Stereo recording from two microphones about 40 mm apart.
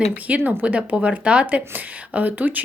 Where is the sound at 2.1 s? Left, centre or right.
Right.